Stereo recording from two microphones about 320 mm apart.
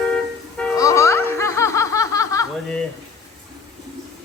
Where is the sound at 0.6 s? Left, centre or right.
Centre.